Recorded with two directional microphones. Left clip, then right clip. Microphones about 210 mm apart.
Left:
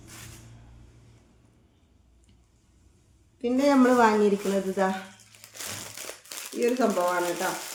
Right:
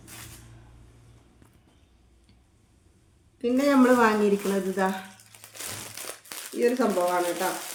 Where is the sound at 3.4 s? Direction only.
15° right (ahead or behind).